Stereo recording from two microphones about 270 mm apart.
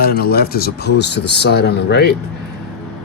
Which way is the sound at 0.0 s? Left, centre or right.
Left.